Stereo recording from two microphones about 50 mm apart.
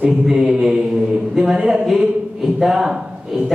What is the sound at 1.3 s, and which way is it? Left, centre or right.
Speech, centre.